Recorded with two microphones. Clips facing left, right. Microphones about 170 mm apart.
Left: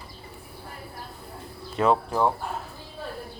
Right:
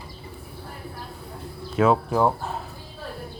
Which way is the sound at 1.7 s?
5° right (ahead or behind).